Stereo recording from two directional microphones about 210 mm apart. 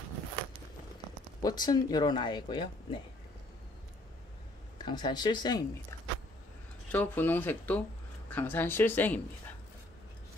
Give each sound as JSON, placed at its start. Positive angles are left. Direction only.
{"t": 1.4, "sound": "speech", "side_deg": 20}
{"t": 4.7, "sound": "speech", "side_deg": 20}